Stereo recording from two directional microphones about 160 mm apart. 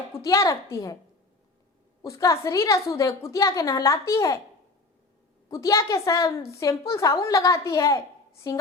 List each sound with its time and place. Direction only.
0.1 s a woman's voice: 20° left (ahead or behind)
2.0 s a woman's voice: 20° left (ahead or behind)
5.5 s a woman's voice: 20° left (ahead or behind)